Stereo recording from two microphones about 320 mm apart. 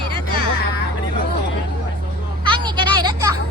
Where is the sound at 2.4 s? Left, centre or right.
Centre.